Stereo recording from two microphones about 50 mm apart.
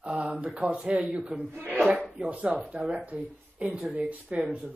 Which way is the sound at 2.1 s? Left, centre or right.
Right.